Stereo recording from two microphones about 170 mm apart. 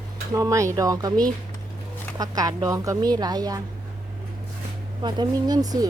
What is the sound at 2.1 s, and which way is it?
Speech, 20° right (ahead or behind).